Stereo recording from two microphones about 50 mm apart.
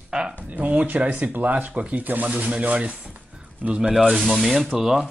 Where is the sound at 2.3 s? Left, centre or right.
Right.